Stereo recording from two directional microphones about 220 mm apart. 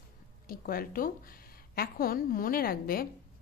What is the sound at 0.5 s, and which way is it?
A woman's voice, 40° left (ahead or behind).